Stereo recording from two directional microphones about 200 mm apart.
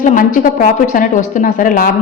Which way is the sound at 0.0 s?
40° left (ahead or behind).